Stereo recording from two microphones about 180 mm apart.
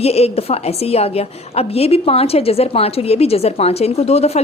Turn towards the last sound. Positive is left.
turn(degrees=35)  # may be behind; listen again after turning